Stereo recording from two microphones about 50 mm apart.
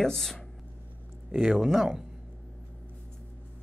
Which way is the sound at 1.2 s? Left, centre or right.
Centre.